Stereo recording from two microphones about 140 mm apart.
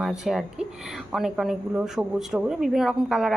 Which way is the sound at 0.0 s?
5° right (ahead or behind).